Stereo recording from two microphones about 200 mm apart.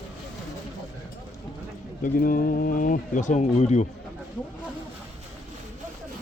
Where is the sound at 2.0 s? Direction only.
45° left (ahead or behind).